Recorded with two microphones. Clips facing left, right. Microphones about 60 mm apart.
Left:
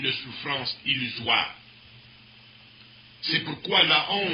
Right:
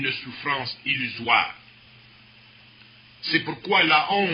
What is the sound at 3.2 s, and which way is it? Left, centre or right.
A man's voice, right.